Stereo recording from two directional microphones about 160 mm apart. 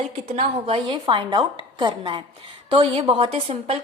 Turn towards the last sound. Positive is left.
turn(degrees=-35)  # may be behind; listen again after turning